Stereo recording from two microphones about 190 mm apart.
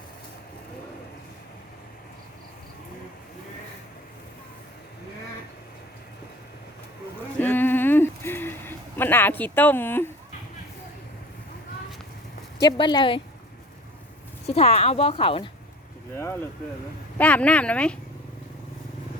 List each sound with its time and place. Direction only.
7.3 s a sound: 10° left (ahead or behind)
12.5 s speech: 25° left (ahead or behind)
14.4 s speech: 35° left (ahead or behind)
16.1 s speech: 15° left (ahead or behind)